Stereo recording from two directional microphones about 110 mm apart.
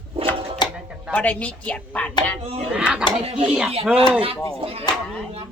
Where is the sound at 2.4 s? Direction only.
65° right (ahead or behind).